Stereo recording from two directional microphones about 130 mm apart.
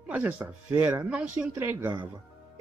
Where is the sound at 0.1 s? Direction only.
15° right (ahead or behind).